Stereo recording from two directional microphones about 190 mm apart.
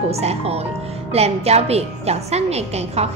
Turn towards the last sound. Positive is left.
turn(degrees=-35)  # may be behind; listen again after turning